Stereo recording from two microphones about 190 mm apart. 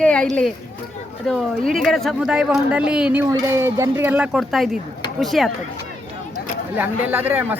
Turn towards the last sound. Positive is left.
turn(degrees=-10)  # may be behind; listen again after turning